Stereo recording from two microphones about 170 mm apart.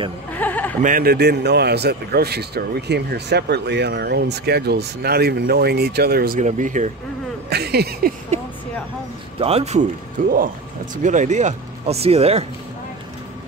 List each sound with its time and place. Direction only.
0.4 s chuckle: 10° left (ahead or behind)
0.8 s a man's voice: 60° right (ahead or behind)
7.4 s a man's voice: 70° right (ahead or behind)
9.4 s speech: 35° right (ahead or behind)
10.2 s speech: 50° right (ahead or behind); by 12.4 s 35° right (ahead or behind)